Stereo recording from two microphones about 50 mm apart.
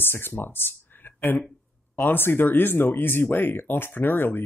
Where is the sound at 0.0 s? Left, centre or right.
Left.